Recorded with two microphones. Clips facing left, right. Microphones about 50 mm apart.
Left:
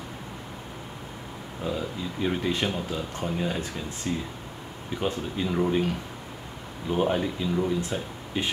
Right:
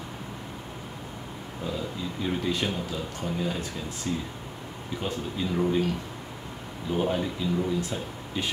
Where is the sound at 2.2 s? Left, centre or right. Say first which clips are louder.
Left 2 dB; left.